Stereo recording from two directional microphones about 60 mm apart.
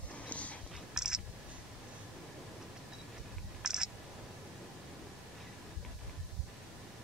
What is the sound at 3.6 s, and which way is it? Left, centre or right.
Camera, centre.